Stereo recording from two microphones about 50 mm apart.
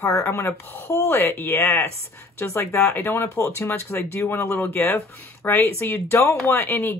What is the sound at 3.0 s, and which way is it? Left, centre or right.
Speech, left.